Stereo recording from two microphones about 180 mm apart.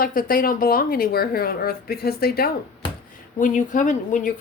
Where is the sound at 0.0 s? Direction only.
50° left (ahead or behind).